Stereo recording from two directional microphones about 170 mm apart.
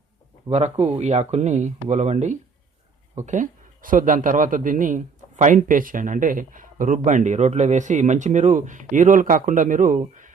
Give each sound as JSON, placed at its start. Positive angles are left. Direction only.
{"t": 0.5, "sound": "a man's voice", "side_deg": -40}